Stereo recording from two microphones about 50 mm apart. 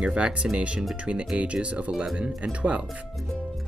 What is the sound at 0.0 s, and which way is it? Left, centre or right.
Speech, right.